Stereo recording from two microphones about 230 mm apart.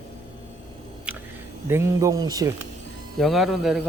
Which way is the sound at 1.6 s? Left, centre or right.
Centre.